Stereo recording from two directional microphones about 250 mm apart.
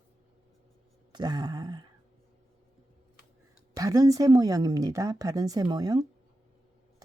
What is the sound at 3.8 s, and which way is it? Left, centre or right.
Speech, centre.